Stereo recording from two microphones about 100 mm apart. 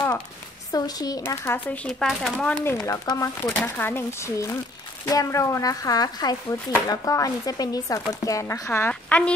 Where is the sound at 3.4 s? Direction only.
15° left (ahead or behind).